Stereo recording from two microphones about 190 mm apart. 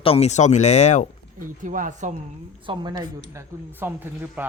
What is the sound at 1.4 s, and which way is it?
Speech, 45° right (ahead or behind).